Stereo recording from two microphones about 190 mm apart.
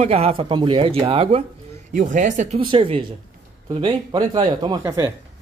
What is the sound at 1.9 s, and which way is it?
Speech, 40° right (ahead or behind).